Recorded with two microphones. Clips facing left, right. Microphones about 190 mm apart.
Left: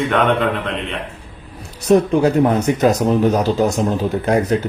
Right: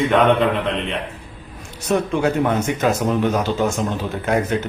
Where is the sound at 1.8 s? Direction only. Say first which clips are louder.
Left 6 dB; 35° left (ahead or behind).